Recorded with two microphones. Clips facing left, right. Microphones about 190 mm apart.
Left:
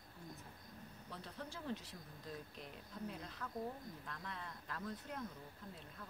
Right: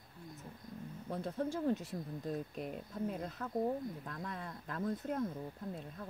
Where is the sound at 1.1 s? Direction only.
50° right (ahead or behind).